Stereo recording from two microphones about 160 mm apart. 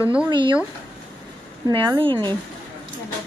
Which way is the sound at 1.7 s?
30° right (ahead or behind).